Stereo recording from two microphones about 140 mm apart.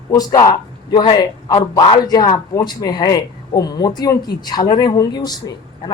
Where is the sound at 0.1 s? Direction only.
25° left (ahead or behind).